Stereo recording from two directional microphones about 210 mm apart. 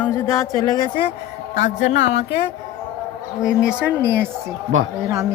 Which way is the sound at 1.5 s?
35° left (ahead or behind).